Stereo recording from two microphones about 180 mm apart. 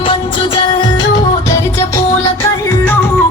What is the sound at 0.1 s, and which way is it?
Music, 30° left (ahead or behind).